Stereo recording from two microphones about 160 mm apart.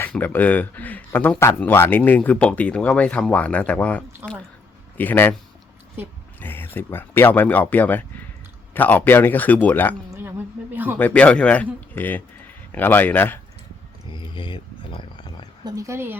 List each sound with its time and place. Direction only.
0.0 s speech: 10° left (ahead or behind)
4.2 s speech: 15° right (ahead or behind)
4.9 s speech: 10° left (ahead or behind)
6.0 s speech: 15° right (ahead or behind)
6.4 s speech: 15° left (ahead or behind)
10.1 s a sound: 15° right (ahead or behind)
10.9 s speech: 10° left (ahead or behind)
14.1 s a sound: 30° left (ahead or behind)
15.6 s a woman's voice: 20° right (ahead or behind)